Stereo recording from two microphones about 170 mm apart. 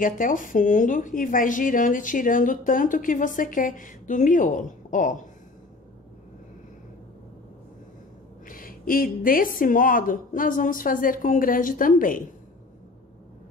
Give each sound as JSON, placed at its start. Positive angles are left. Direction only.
{"t": 0.0, "sound": "speech", "side_deg": 50}
{"t": 8.5, "sound": "speech", "side_deg": 55}